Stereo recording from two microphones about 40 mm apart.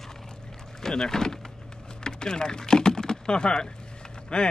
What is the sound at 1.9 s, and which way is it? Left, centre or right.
Typing, centre.